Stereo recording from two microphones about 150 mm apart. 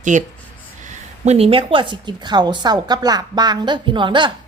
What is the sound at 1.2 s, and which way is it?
A woman's voice, 45° right (ahead or behind).